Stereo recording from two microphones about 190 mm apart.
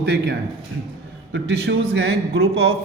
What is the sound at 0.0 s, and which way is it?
A man's voice, 60° right (ahead or behind).